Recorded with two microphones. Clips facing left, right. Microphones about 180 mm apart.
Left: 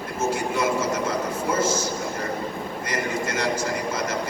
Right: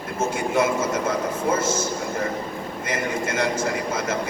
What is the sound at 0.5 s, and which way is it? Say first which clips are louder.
Vehicle: right 2 dB; 55° right (ahead or behind).